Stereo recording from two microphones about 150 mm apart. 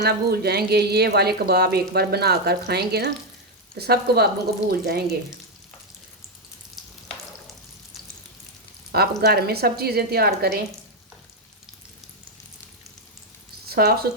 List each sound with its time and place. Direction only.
0.0 s speech: 90° right
6.8 s frying: centre (ahead or behind)
8.9 s speech: 90° right
13.7 s speech: 90° right